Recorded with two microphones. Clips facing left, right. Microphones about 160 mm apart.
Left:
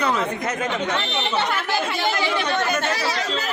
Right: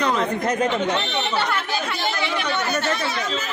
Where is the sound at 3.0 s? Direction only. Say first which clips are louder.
Left 1 dB; 35° left (ahead or behind).